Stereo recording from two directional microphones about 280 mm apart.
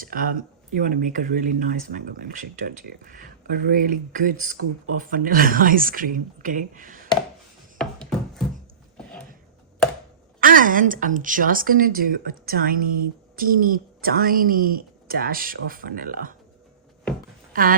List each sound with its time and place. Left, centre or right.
0.0 s speech: right
7.8 s a sound: centre
10.4 s a woman's voice: right
17.5 s speech: right